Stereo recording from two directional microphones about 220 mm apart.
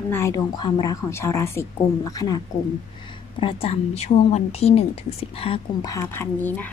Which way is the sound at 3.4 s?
25° left (ahead or behind).